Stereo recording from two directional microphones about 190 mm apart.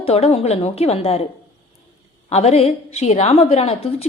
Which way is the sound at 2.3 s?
35° left (ahead or behind).